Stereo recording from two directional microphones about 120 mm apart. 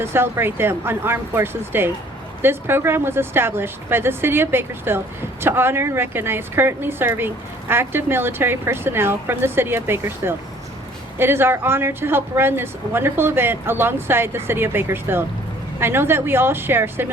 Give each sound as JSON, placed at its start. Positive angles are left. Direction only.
{"t": 0.0, "sound": "speech", "side_deg": -20}